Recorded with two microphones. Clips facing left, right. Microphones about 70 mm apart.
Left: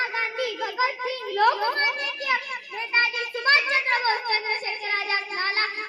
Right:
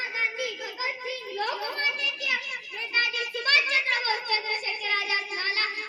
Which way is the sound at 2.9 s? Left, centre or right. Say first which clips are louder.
Left 4 dB; left.